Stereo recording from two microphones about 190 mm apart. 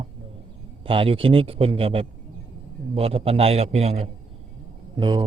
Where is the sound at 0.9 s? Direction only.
30° right (ahead or behind).